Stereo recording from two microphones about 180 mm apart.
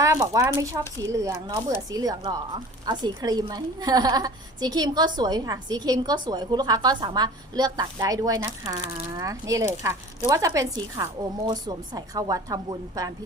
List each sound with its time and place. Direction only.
0.0 s a woman's voice: 20° right (ahead or behind)